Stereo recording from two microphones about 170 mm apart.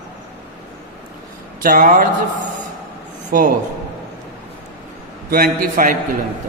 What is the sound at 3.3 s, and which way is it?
Speech, 60° right (ahead or behind).